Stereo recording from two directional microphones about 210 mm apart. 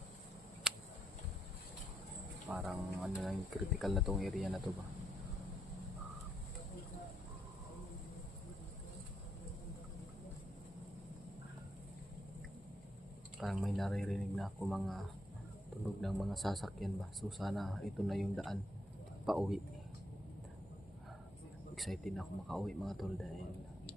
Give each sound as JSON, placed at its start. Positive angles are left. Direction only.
{"t": 2.5, "sound": "speech", "side_deg": -5}
{"t": 13.4, "sound": "a sound", "side_deg": 0}
{"t": 16.0, "sound": "speech", "side_deg": 0}
{"t": 21.8, "sound": "speech", "side_deg": 0}